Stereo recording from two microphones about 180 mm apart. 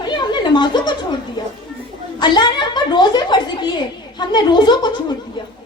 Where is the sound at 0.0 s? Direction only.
25° left (ahead or behind).